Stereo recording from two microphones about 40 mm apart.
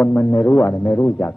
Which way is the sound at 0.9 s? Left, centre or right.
Centre.